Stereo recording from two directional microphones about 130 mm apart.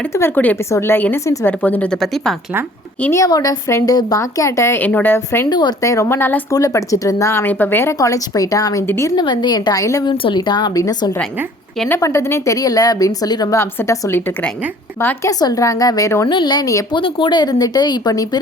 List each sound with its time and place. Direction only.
0.1 s speech: 20° left (ahead or behind)
1.5 s a woman's voice: 15° left (ahead or behind)
3.0 s speech: 20° left (ahead or behind)
3.2 s speech: 30° left (ahead or behind)
5.5 s a woman's voice: 35° left (ahead or behind)
5.8 s speech: 25° left (ahead or behind)
6.5 s speech: 25° left (ahead or behind)
9.1 s a woman's voice: 35° left (ahead or behind)
16.3 s a woman's voice: 35° left (ahead or behind)
16.9 s a woman's voice: 40° left (ahead or behind)